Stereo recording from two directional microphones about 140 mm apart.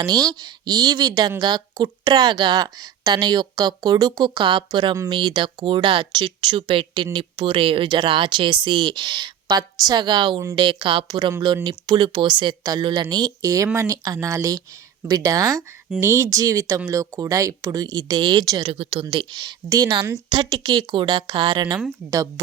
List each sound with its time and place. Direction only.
0.0 s speech: 30° right (ahead or behind)
18.7 s speech: 45° right (ahead or behind)